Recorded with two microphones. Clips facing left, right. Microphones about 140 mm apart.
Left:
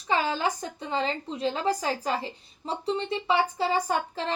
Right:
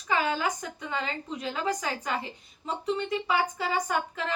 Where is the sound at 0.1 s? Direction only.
30° left (ahead or behind).